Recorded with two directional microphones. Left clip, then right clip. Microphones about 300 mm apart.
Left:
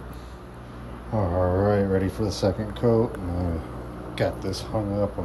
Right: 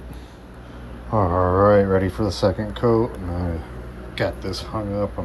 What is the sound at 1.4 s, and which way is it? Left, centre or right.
Speech, centre.